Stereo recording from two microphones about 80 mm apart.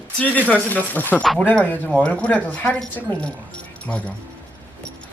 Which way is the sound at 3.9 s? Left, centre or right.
Centre.